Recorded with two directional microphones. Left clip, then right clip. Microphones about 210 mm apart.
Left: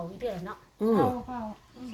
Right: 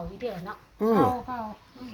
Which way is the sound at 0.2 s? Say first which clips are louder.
Even; 20° left (ahead or behind).